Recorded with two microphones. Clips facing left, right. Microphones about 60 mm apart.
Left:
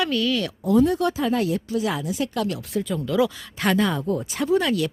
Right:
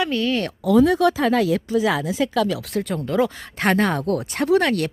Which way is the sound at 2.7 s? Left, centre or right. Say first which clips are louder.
Right 1 dB; right.